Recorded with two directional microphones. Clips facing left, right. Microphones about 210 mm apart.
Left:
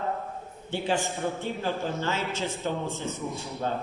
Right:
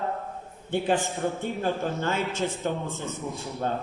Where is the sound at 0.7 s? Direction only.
55° right (ahead or behind).